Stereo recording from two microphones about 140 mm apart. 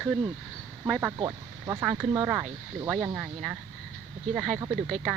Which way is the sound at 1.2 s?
25° right (ahead or behind).